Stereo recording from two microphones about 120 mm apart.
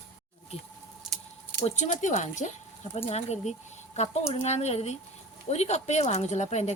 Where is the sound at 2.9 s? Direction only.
65° left (ahead or behind).